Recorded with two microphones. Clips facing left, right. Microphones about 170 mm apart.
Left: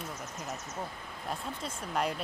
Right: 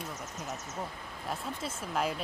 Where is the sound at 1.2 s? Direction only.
Centre (ahead or behind).